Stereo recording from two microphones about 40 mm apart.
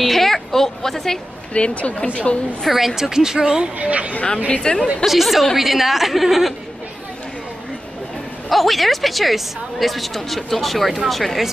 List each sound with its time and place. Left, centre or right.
0.0 s a sound: centre
1.5 s speech: left
2.6 s a woman's voice: centre
3.6 s speech: right
4.6 s speech: centre
5.0 s a woman's voice: centre
8.5 s a woman's voice: centre